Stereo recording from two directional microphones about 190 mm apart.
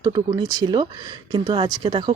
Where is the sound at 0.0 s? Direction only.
20° right (ahead or behind).